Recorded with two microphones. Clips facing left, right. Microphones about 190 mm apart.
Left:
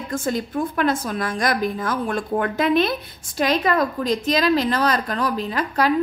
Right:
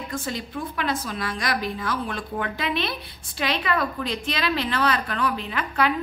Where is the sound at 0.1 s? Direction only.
45° left (ahead or behind).